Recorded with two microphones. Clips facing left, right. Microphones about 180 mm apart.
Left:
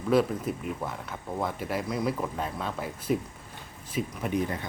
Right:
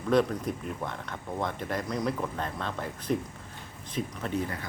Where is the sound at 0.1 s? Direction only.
5° left (ahead or behind).